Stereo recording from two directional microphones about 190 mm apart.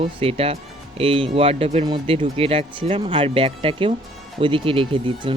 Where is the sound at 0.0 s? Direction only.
30° right (ahead or behind).